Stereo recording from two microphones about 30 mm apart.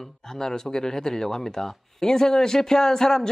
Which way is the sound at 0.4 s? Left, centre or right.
Centre.